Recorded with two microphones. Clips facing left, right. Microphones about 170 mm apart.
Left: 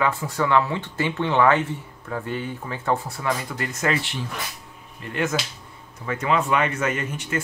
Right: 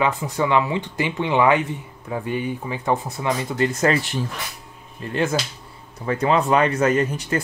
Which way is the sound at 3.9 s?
45° right (ahead or behind).